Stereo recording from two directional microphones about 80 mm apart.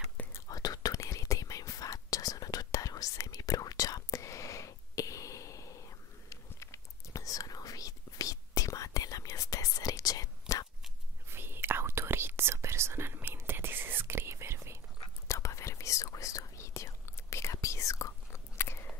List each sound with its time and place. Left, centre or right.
0.5 s whispering: left
11.2 s whispering: right
15.2 s whispering: left